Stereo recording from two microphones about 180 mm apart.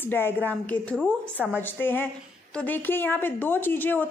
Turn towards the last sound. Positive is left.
turn(degrees=10)  # may be behind; listen again after turning